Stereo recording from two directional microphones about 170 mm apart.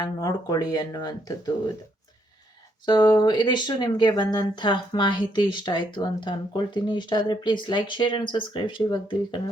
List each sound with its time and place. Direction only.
0.0 s speech: 20° left (ahead or behind)
2.8 s speech: 25° left (ahead or behind)